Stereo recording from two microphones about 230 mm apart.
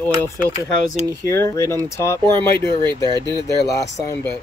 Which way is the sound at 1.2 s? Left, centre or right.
Centre.